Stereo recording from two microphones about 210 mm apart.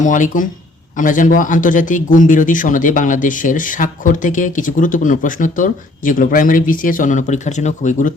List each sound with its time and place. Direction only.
0.0 s speech: 35° left (ahead or behind)